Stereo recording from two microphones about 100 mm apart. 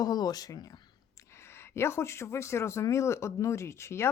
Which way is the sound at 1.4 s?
25° left (ahead or behind).